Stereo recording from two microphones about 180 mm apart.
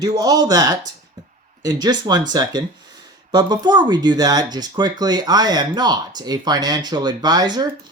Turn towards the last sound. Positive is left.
turn(degrees=-25)  # may be behind; listen again after turning